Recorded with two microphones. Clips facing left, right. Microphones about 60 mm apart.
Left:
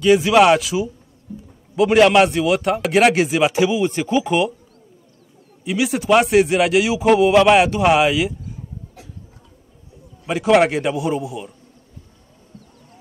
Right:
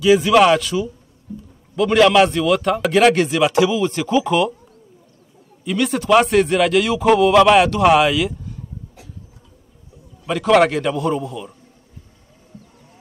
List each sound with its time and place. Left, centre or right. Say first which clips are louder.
0.2 s speech: even; centre
5.6 s speech: right 1 dB; centre
10.2 s speech: right 1 dB; centre